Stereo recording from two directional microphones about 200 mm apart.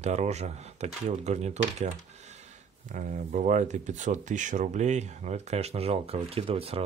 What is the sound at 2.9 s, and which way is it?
Speech, 35° right (ahead or behind).